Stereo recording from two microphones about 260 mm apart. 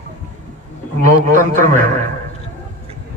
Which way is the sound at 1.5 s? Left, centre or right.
Right.